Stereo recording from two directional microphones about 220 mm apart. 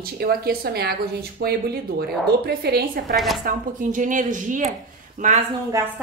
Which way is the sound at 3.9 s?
35° right (ahead or behind).